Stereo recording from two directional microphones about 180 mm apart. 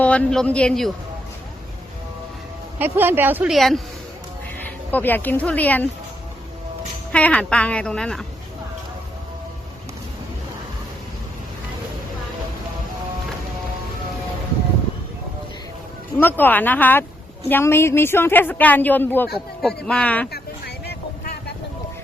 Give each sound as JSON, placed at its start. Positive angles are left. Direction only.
{"t": 0.0, "sound": "a woman's voice", "side_deg": 5}
{"t": 2.7, "sound": "a woman's voice", "side_deg": -10}
{"t": 7.1, "sound": "a woman's voice", "side_deg": 5}
{"t": 16.1, "sound": "a woman's voice", "side_deg": 10}
{"t": 20.3, "sound": "vehicle", "side_deg": 65}